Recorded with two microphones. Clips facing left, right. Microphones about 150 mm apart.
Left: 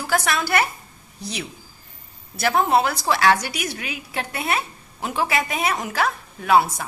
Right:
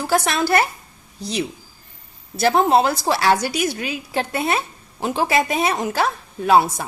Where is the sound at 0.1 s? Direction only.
30° right (ahead or behind).